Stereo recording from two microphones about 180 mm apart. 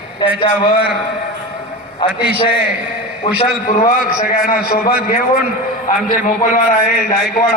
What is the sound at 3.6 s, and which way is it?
A man's voice, 50° left (ahead or behind).